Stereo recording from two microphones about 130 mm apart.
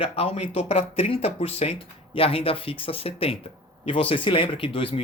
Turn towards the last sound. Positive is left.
turn(degrees=45)  # may be behind; listen again after turning